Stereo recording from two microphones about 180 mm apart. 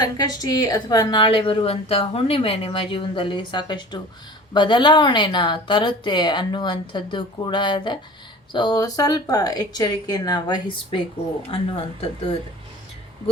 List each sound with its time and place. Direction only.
0.0 s a woman's voice: 20° left (ahead or behind)